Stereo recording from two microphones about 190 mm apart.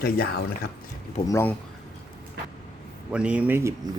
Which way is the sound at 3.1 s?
5° right (ahead or behind).